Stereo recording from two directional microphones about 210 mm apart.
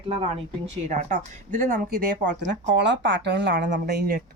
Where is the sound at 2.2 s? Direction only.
60° right (ahead or behind).